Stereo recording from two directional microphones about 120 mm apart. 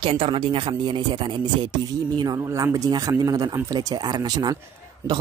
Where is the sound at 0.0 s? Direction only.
45° right (ahead or behind).